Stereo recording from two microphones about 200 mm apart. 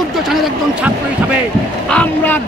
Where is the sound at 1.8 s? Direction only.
10° left (ahead or behind).